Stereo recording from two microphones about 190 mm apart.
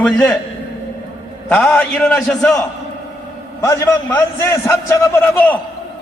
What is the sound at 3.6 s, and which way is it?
A man's voice, 15° left (ahead or behind).